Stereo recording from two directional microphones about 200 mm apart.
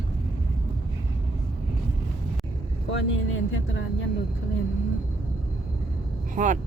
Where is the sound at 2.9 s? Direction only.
65° left (ahead or behind).